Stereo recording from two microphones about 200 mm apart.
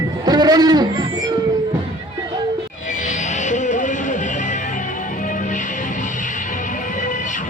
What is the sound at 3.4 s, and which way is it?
Music, 35° left (ahead or behind).